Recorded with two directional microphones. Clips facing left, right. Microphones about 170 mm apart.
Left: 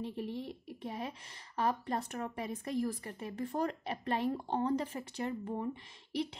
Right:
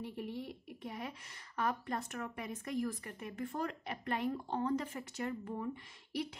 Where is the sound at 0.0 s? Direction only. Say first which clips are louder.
Left 3 dB; 25° left (ahead or behind).